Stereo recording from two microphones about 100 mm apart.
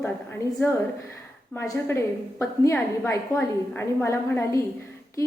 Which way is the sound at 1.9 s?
30° left (ahead or behind).